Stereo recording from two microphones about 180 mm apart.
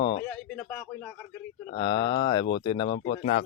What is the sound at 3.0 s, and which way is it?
Speech, 40° left (ahead or behind).